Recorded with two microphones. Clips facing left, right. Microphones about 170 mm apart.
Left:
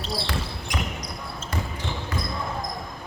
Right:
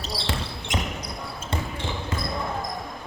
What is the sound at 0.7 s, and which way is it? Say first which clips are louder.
Basketball bounce: right 2 dB; 20° right (ahead or behind).